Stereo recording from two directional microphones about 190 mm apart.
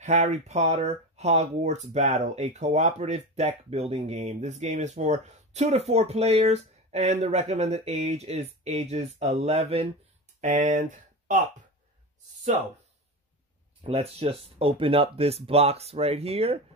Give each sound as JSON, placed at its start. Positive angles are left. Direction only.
{"t": 0.0, "sound": "speech", "side_deg": -35}
{"t": 13.8, "sound": "speech", "side_deg": -30}